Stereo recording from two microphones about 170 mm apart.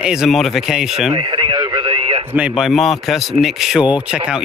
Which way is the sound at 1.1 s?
30° right (ahead or behind).